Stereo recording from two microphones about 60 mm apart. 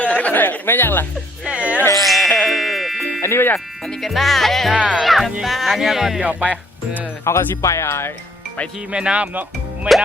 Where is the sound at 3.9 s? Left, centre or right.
Centre.